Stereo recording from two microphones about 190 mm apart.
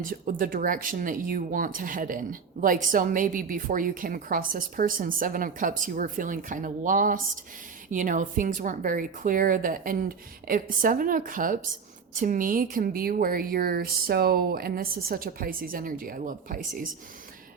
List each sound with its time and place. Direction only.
0.0 s speech: 45° right (ahead or behind)